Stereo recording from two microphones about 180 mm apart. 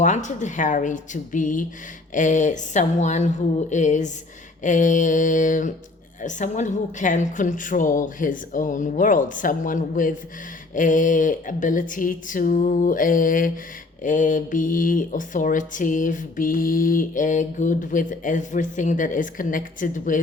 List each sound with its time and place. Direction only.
0.0 s a woman's voice: 40° left (ahead or behind)